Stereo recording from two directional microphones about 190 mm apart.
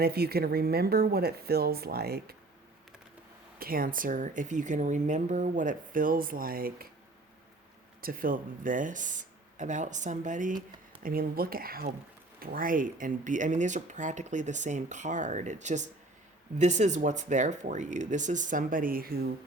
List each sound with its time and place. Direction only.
0.0 s speech: 55° right (ahead or behind)
3.6 s speech: 50° right (ahead or behind)
8.0 s speech: 50° right (ahead or behind)